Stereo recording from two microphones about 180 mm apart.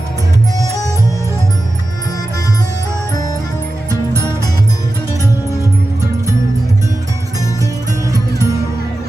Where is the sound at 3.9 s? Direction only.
15° right (ahead or behind).